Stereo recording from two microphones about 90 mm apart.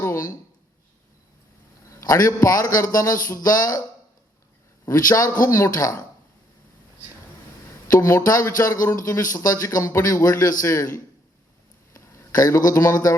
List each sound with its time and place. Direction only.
0.0 s a sound: 35° left (ahead or behind)
1.9 s speech: 40° left (ahead or behind)
4.9 s speech: 40° left (ahead or behind)
7.9 s speech: 35° left (ahead or behind)
11.9 s speech: 40° left (ahead or behind)